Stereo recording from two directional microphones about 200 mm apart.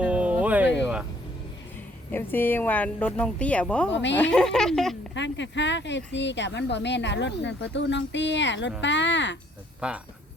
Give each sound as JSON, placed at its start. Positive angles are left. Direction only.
{"t": 0.0, "sound": "a sound", "side_deg": -5}
{"t": 2.3, "sound": "speech", "side_deg": 10}
{"t": 3.9, "sound": "speech", "side_deg": 65}
{"t": 4.2, "sound": "speech", "side_deg": 5}
{"t": 5.1, "sound": "speech", "side_deg": 65}
{"t": 9.8, "sound": "speech", "side_deg": -5}